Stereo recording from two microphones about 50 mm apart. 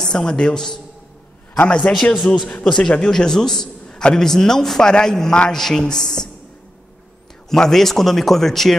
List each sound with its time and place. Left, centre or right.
0.0 s a man's voice: centre
1.8 s a man's voice: centre
2.6 s a man's voice: centre
7.4 s speech: centre